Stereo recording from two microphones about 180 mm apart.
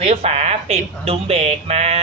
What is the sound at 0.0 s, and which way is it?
Speech, 35° right (ahead or behind).